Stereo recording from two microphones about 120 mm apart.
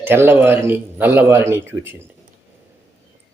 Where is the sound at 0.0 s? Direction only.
20° right (ahead or behind).